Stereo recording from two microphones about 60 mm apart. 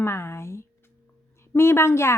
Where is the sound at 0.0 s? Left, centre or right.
Left.